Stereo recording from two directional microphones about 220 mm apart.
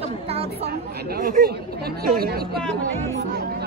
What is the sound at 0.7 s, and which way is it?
A woman's voice, 45° right (ahead or behind).